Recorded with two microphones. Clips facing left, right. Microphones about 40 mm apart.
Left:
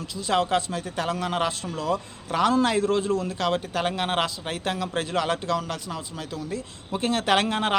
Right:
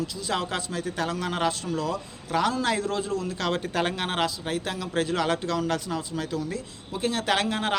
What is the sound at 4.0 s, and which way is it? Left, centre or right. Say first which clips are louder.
A man's voice: left 2 dB; left.